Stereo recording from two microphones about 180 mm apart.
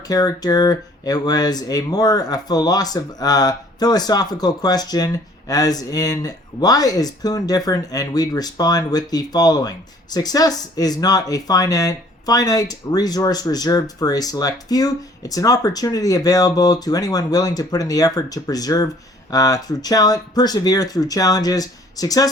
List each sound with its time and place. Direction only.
0.1 s speech: 20° left (ahead or behind)